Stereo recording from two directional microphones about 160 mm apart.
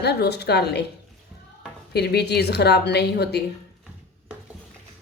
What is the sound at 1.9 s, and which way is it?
A woman's voice, 90° left.